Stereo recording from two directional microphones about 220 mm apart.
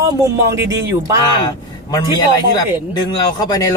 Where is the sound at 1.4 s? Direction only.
15° left (ahead or behind).